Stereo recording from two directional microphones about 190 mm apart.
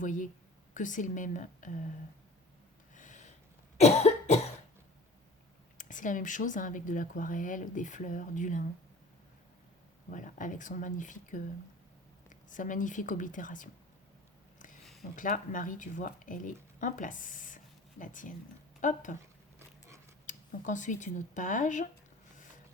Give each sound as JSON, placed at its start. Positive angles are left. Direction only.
{"t": 0.0, "sound": "speech", "side_deg": 45}
{"t": 2.9, "sound": "a sound", "side_deg": 40}
{"t": 3.8, "sound": "cough", "side_deg": 35}
{"t": 5.7, "sound": "speech", "side_deg": 40}
{"t": 10.1, "sound": "speech", "side_deg": 45}
{"t": 15.1, "sound": "speech", "side_deg": 45}
{"t": 20.2, "sound": "speech", "side_deg": 40}